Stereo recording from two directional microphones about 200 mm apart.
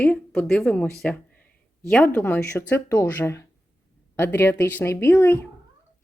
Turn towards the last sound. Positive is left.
turn(degrees=10)  # may be behind; listen again after turning